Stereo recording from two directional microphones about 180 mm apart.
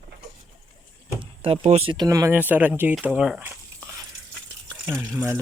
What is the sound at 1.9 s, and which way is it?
Speech, 20° right (ahead or behind).